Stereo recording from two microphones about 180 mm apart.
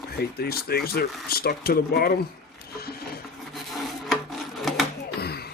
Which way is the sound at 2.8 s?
60° left (ahead or behind).